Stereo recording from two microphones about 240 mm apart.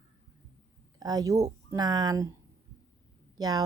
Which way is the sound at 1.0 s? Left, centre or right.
Centre.